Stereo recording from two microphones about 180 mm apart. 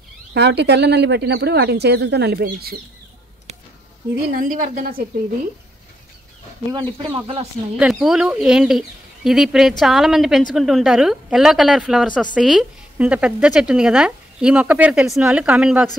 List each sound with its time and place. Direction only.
0.3 s speech: 65° right (ahead or behind)
4.4 s a woman's voice: 45° right (ahead or behind)
6.7 s speech: 25° right (ahead or behind)
7.7 s speech: centre (ahead or behind)